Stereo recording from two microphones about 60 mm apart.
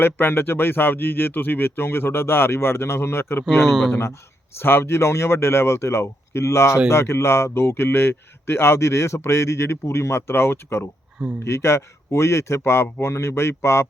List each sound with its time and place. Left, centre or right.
0.0 s speech: left
3.6 s speech: centre
4.5 s speech: left